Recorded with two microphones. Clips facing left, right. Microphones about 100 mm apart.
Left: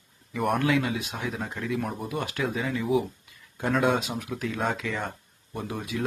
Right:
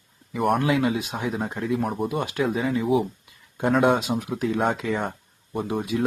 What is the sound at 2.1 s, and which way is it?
Speech, 25° right (ahead or behind).